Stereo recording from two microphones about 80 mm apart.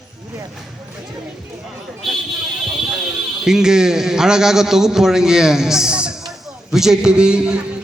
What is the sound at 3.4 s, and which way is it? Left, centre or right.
A man's voice, centre.